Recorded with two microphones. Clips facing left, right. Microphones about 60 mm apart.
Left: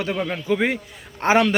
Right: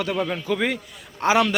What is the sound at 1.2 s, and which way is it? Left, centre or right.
Speech, left.